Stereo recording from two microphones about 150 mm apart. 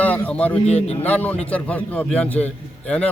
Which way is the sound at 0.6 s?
45° left (ahead or behind).